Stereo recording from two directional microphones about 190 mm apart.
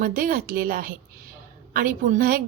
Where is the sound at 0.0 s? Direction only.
45° right (ahead or behind).